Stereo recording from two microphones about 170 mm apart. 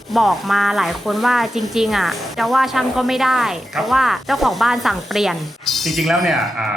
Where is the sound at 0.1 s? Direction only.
Centre (ahead or behind).